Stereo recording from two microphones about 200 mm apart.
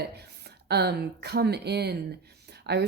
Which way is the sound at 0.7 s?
55° right (ahead or behind).